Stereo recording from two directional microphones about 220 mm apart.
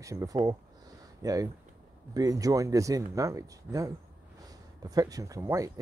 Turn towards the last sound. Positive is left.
turn(degrees=-15)  # may be behind; listen again after turning